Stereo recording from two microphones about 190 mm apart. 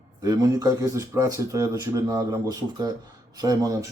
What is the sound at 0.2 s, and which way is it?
Speech, 20° right (ahead or behind).